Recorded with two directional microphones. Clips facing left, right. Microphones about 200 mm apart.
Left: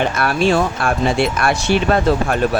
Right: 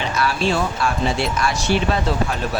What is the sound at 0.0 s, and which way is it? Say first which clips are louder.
Speech: left 4 dB; 55° left (ahead or behind).